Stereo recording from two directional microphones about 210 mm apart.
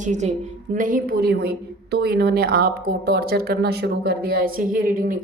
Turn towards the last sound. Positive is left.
turn(degrees=-45)  # may be behind; listen again after turning